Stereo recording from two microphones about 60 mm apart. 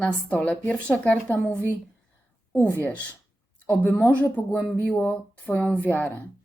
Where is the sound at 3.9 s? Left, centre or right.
Left.